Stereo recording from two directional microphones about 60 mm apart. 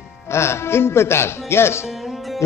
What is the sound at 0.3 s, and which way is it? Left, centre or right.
Speech, left.